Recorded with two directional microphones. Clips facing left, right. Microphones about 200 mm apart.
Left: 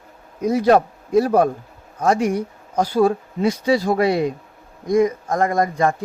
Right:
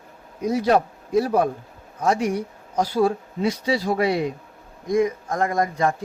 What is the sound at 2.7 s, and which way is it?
Speech, 50° left (ahead or behind).